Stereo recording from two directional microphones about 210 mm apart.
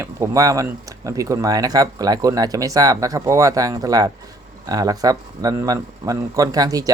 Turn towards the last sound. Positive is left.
turn(degrees=-15)  # may be behind; listen again after turning